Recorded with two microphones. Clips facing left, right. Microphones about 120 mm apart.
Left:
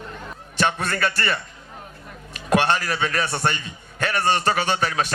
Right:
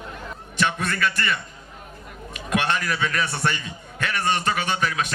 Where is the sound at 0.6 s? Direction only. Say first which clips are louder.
Left 1 dB; 40° left (ahead or behind).